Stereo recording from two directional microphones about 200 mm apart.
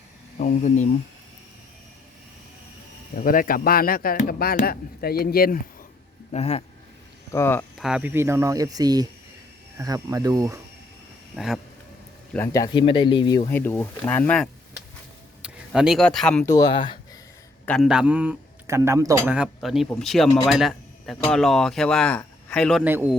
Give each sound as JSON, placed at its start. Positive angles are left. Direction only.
{"t": 0.3, "sound": "speech", "side_deg": 35}
{"t": 3.2, "sound": "speech", "side_deg": 45}
{"t": 6.3, "sound": "speech", "side_deg": 30}
{"t": 7.3, "sound": "speech", "side_deg": 10}
{"t": 7.8, "sound": "a man's voice", "side_deg": -5}
{"t": 11.3, "sound": "speech", "side_deg": 0}
{"t": 12.3, "sound": "speech", "side_deg": 15}
{"t": 13.5, "sound": "speech", "side_deg": 10}
{"t": 16.5, "sound": "speech", "side_deg": 20}
{"t": 17.7, "sound": "a man's voice", "side_deg": 0}
{"t": 22.8, "sound": "a man's voice", "side_deg": -10}